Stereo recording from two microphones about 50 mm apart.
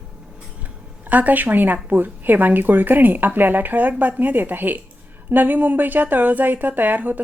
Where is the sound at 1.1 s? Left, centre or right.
Right.